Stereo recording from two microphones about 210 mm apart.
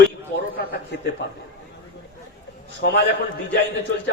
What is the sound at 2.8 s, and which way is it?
Speech, 55° left (ahead or behind).